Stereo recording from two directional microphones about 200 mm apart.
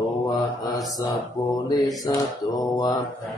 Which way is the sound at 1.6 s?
20° left (ahead or behind).